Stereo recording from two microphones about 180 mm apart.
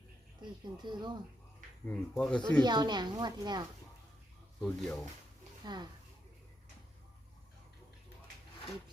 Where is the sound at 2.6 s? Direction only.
25° right (ahead or behind).